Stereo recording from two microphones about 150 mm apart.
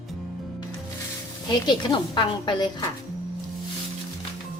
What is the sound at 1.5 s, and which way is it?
A woman's voice, 30° left (ahead or behind).